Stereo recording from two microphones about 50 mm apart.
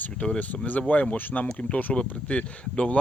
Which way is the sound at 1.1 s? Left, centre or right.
Left.